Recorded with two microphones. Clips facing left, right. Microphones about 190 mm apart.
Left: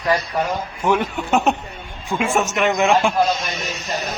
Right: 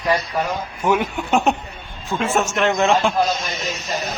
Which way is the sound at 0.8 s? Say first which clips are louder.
Even; 5° right (ahead or behind).